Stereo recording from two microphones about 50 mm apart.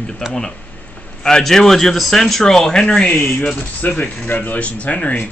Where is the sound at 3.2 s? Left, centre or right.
Left.